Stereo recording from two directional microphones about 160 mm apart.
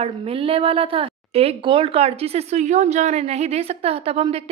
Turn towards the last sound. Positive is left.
turn(degrees=-40)  # may be behind; listen again after turning